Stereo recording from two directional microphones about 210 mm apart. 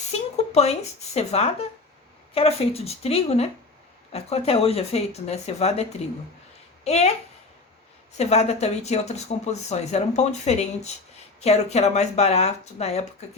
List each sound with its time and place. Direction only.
0.1 s speech: 30° left (ahead or behind)
8.2 s speech: 30° left (ahead or behind)